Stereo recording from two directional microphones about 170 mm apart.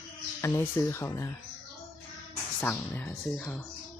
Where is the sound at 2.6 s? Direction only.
10° left (ahead or behind).